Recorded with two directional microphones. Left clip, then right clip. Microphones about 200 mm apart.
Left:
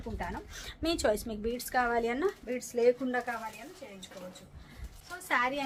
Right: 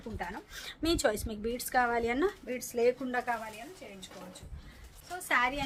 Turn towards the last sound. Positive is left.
turn(degrees=-10)  # may be behind; listen again after turning